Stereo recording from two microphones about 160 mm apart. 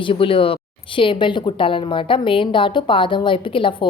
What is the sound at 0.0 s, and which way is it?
Speech, 35° left (ahead or behind).